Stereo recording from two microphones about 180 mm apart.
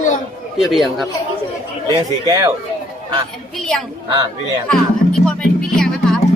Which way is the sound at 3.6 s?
Centre (ahead or behind).